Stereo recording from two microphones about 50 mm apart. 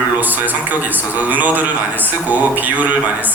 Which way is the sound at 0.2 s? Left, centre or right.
Right.